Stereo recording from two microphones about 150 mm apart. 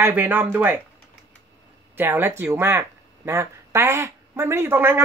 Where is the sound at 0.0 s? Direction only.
15° right (ahead or behind).